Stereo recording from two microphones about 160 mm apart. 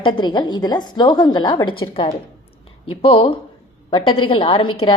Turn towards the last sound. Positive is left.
turn(degrees=35)  # may be behind; listen again after turning